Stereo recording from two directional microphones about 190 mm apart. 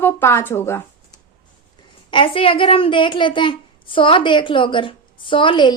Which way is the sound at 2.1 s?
25° left (ahead or behind).